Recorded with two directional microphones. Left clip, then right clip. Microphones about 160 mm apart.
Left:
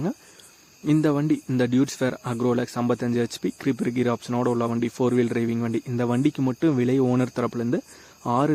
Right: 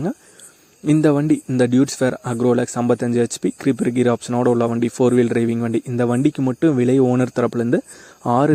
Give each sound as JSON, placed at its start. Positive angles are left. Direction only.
{"t": 1.0, "sound": "speech", "side_deg": -30}